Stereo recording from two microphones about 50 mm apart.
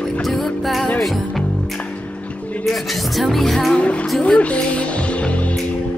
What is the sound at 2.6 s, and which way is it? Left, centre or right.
Music, centre.